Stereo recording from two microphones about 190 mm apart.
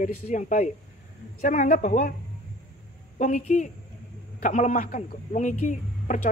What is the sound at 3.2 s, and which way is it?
Speech, 40° left (ahead or behind).